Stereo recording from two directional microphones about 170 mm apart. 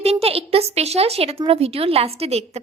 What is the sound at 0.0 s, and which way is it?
A woman's voice, 35° right (ahead or behind).